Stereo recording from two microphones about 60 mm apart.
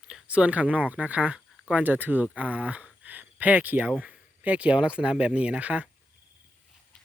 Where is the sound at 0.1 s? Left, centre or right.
Centre.